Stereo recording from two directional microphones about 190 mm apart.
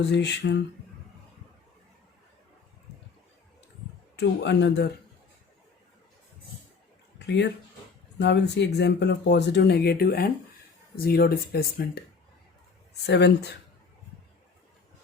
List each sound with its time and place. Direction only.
0.0 s speech: 65° left (ahead or behind)
4.2 s speech: 65° left (ahead or behind)
7.3 s speech: 65° left (ahead or behind)
13.1 s speech: 65° left (ahead or behind)